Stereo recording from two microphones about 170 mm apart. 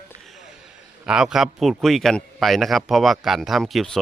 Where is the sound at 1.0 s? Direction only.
5° right (ahead or behind).